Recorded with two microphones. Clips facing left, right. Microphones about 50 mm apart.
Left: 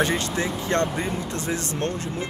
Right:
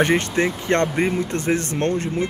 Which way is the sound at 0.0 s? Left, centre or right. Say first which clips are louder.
Right 5 dB; right.